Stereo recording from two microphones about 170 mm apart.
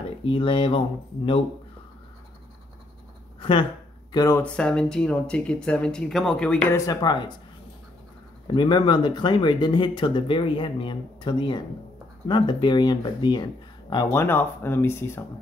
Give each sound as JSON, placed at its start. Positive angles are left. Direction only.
{"t": 0.2, "sound": "speech", "side_deg": 30}
{"t": 3.3, "sound": "a sound", "side_deg": 30}
{"t": 4.1, "sound": "speech", "side_deg": 20}
{"t": 4.4, "sound": "speech", "side_deg": 5}
{"t": 6.9, "sound": "speech", "side_deg": 25}
{"t": 8.5, "sound": "speech", "side_deg": 30}